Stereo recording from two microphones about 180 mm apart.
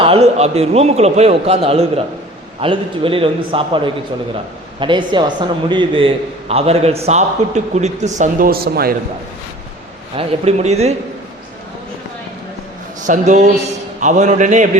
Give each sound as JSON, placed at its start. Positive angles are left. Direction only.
{"t": 0.0, "sound": "a man's voice", "side_deg": -35}
{"t": 10.2, "sound": "a man's voice", "side_deg": -35}
{"t": 13.0, "sound": "a man's voice", "side_deg": -45}